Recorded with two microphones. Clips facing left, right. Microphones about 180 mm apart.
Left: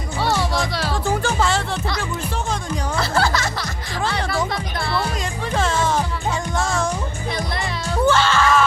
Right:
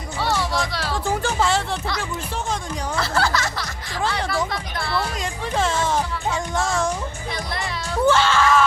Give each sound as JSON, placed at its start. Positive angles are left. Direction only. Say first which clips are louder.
{"t": 0.3, "sound": "music", "louder": "left 2 dB", "side_deg": 15}
{"t": 1.2, "sound": "music", "louder": "left 1 dB", "side_deg": -20}
{"t": 3.0, "sound": "music", "louder": "left 1 dB", "side_deg": 15}
{"t": 5.5, "sound": "music", "louder": "left 1 dB", "side_deg": -20}
{"t": 8.1, "sound": "music", "louder": "even", "side_deg": -15}
{"t": 8.4, "sound": "music", "louder": "even", "side_deg": -5}